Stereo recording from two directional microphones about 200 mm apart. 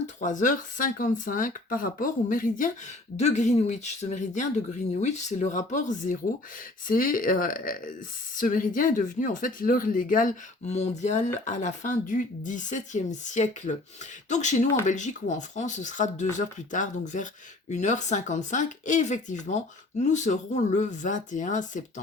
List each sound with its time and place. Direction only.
0.2 s speech: 40° left (ahead or behind)